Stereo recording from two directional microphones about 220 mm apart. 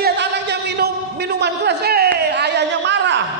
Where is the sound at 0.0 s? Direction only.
50° right (ahead or behind).